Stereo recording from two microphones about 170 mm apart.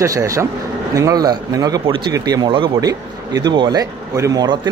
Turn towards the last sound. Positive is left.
turn(degrees=-25)  # may be behind; listen again after turning